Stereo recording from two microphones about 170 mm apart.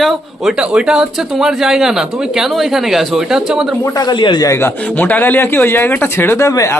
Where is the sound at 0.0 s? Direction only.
Centre (ahead or behind).